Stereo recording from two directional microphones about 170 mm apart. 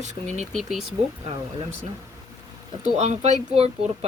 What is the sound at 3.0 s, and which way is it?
Speech, 40° right (ahead or behind).